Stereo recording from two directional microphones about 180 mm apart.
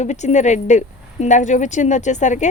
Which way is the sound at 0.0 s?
40° left (ahead or behind).